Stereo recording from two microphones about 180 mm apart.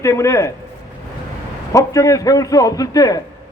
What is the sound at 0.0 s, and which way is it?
Speech, 15° left (ahead or behind).